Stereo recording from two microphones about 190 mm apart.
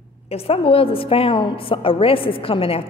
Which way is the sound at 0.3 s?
30° left (ahead or behind).